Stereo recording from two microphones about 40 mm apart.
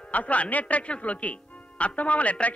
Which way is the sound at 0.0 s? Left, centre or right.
Left.